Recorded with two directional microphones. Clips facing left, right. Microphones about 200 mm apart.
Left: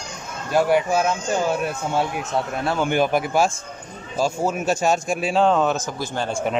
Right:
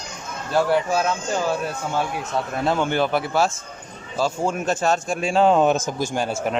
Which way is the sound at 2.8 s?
15° left (ahead or behind).